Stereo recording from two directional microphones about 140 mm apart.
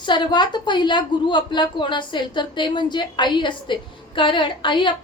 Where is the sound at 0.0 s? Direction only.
35° left (ahead or behind).